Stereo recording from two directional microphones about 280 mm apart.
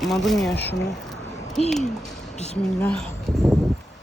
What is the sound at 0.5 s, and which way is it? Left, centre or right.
Speech, left.